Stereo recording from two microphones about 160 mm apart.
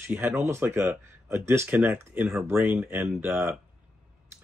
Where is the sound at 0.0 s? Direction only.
10° right (ahead or behind).